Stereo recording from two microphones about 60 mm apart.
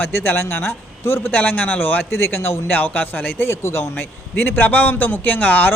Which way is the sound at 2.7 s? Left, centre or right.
Left.